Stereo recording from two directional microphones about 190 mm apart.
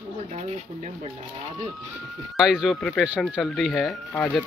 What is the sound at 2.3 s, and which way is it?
Speech, centre (ahead or behind).